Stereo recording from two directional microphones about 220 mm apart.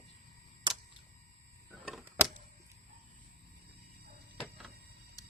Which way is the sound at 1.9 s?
Centre (ahead or behind).